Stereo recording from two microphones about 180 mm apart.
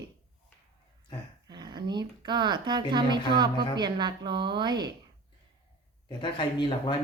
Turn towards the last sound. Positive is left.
turn(degrees=25)  # may be behind; listen again after turning